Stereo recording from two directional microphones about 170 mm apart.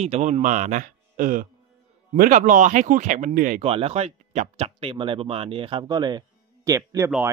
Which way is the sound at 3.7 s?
35° right (ahead or behind).